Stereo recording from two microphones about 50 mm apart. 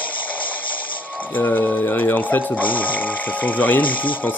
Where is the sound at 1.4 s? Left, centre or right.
Left.